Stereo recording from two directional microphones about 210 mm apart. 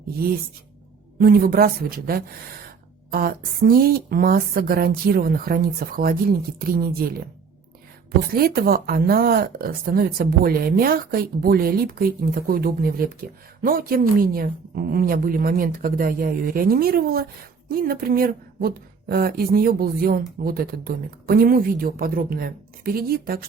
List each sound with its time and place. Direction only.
1.2 s a woman's voice: 45° right (ahead or behind)
8.4 s a woman's voice: 45° right (ahead or behind)